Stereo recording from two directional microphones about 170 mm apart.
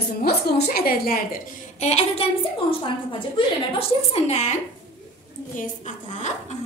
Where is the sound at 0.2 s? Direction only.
70° left (ahead or behind); by 4.6 s 40° left (ahead or behind).